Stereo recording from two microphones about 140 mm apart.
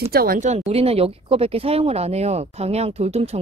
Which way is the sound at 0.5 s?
45° right (ahead or behind).